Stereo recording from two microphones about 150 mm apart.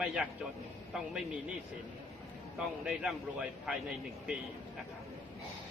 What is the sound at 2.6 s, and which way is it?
A man's voice, 5° right (ahead or behind).